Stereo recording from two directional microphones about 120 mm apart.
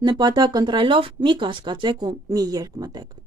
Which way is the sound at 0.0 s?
35° right (ahead or behind).